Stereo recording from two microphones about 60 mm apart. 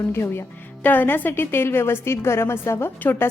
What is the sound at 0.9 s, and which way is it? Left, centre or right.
A woman's voice, left.